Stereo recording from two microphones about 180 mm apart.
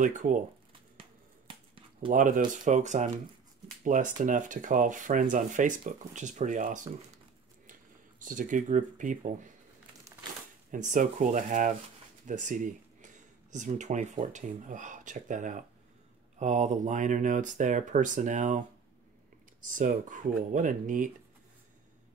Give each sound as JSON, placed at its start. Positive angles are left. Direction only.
{"t": 0.0, "sound": "speech", "side_deg": -45}
{"t": 2.0, "sound": "speech", "side_deg": -45}
{"t": 8.2, "sound": "speech", "side_deg": -50}
{"t": 10.7, "sound": "speech", "side_deg": -45}
{"t": 19.8, "sound": "speech", "side_deg": -45}